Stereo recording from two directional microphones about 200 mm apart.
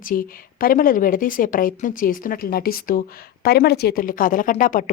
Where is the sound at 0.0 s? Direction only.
45° left (ahead or behind).